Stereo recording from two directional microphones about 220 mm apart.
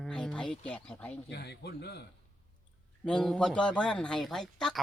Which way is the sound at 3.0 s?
5° left (ahead or behind).